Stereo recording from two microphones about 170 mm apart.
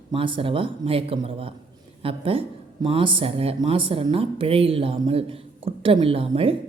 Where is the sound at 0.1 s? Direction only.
30° right (ahead or behind).